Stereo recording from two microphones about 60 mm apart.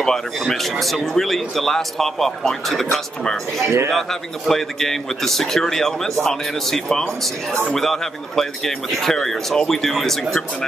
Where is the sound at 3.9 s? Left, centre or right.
Centre.